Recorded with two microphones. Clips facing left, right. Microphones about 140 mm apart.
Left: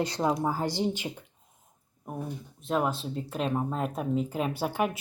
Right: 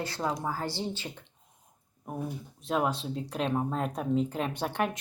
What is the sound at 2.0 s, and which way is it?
Speech, centre (ahead or behind).